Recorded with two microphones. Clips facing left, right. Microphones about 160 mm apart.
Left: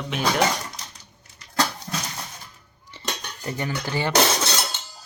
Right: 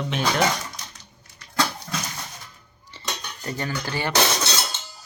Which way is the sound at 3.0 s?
15° left (ahead or behind).